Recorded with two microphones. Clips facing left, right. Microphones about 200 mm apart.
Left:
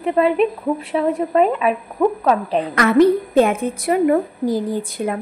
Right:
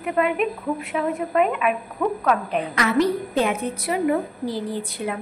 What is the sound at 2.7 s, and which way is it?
A woman's voice, 55° left (ahead or behind).